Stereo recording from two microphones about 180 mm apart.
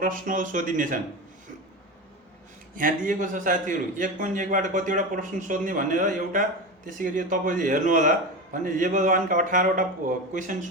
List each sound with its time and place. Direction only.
0.0 s a man's voice: 50° right (ahead or behind)
2.7 s a man's voice: 50° right (ahead or behind)